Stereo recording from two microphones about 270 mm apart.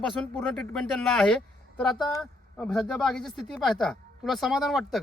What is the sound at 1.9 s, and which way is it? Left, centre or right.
Speech, centre.